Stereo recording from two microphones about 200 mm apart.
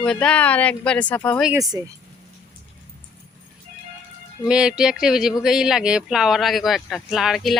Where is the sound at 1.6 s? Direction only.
15° right (ahead or behind).